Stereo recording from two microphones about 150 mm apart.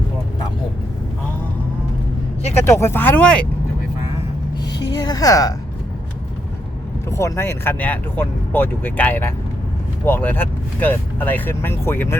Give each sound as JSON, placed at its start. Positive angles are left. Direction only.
{"t": 2.6, "sound": "speech", "side_deg": 15}
{"t": 4.6, "sound": "music", "side_deg": 25}
{"t": 7.1, "sound": "speech", "side_deg": 20}